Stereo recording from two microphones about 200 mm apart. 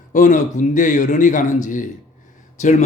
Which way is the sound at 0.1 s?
40° left (ahead or behind).